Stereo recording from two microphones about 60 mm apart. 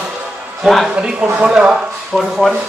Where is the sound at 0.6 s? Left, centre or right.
Centre.